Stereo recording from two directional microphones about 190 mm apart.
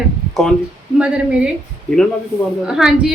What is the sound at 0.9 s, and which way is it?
Speech, 5° right (ahead or behind).